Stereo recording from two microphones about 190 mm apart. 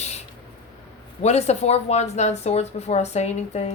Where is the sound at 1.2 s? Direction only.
35° left (ahead or behind).